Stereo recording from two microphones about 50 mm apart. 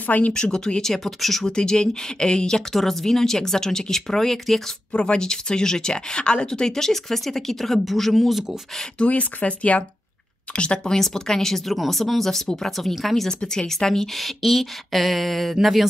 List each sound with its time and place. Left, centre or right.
0.0 s speech: left
0.3 s speech: centre
1.5 s speech: centre
2.7 s speech: centre
4.9 s speech: left; by 8.5 s centre
8.9 s speech: left; by 15.9 s centre